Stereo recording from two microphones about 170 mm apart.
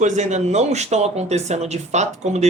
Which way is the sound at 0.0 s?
45° right (ahead or behind).